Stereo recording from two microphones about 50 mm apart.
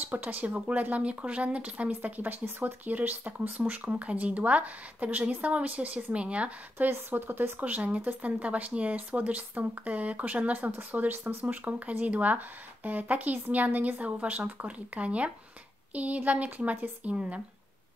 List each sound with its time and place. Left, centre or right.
0.0 s speech: right
0.6 s a woman's voice: right
6.8 s speech: right
10.6 s speech: right
11.4 s speech: right
15.9 s a sound: right
16.2 s a woman's voice: right